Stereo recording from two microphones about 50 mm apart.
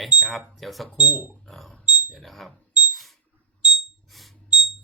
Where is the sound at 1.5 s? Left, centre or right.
Centre.